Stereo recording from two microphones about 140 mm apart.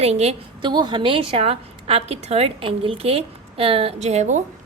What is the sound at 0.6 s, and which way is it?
A woman's voice, 35° right (ahead or behind).